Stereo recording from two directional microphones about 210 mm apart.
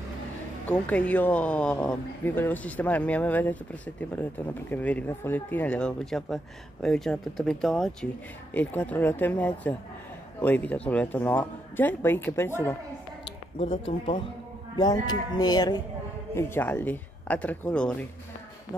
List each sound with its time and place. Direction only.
0.7 s speech: 5° left (ahead or behind)
13.2 s speech: 25° left (ahead or behind); by 17.9 s 5° left (ahead or behind)